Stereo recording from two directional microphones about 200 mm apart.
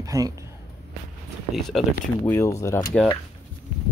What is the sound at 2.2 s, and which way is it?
Speech, 15° left (ahead or behind).